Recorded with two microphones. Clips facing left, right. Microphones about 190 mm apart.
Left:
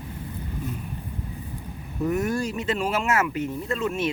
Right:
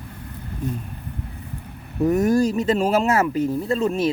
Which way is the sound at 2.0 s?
40° right (ahead or behind).